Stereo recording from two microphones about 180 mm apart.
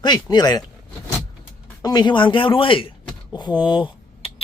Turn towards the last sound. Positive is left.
turn(degrees=25)  # may be behind; listen again after turning